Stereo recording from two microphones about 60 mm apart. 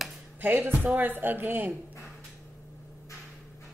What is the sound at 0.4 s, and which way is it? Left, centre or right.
Speech, right.